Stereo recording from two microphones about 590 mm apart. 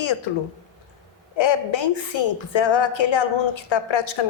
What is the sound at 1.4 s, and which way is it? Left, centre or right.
A woman's voice, left.